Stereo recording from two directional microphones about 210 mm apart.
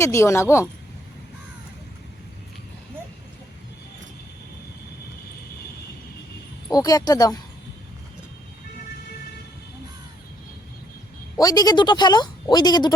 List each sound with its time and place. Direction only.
0.0 s a woman's voice: 15° left (ahead or behind)
6.7 s a woman's voice: 15° left (ahead or behind)
11.3 s speech: 15° left (ahead or behind)